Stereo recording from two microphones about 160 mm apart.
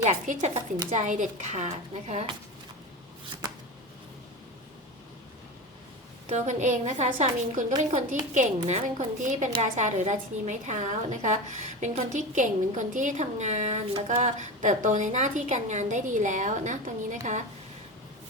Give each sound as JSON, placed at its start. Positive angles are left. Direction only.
{"t": 0.0, "sound": "a woman's voice", "side_deg": -45}
{"t": 6.2, "sound": "a woman's voice", "side_deg": -45}